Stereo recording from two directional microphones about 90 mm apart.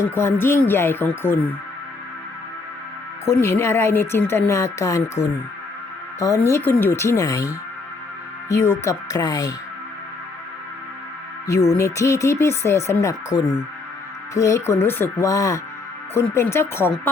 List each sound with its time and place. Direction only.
0.0 s speech: 30° left (ahead or behind)
3.2 s speech: 30° left (ahead or behind)
11.4 s speech: 30° left (ahead or behind)
14.3 s speech: 35° left (ahead or behind)
15.3 s speech: 35° left (ahead or behind)